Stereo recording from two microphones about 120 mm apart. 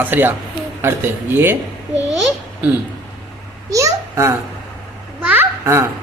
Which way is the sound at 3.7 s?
25° right (ahead or behind).